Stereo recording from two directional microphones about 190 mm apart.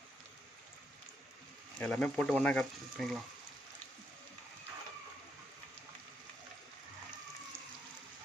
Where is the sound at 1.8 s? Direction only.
5° left (ahead or behind).